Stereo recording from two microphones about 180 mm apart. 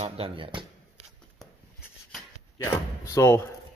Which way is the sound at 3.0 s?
15° left (ahead or behind).